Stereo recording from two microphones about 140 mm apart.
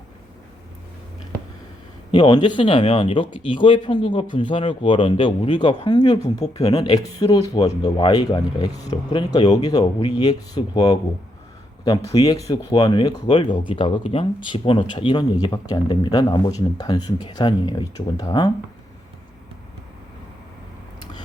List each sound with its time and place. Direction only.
2.1 s speech: 30° left (ahead or behind)